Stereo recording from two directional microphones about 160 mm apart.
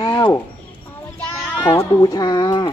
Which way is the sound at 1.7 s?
25° left (ahead or behind).